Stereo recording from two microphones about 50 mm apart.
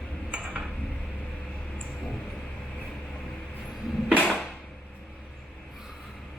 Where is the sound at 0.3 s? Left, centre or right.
Centre.